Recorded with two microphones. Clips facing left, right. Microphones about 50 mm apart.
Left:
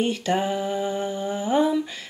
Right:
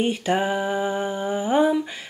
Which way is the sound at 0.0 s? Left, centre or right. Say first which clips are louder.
Right 1 dB; centre.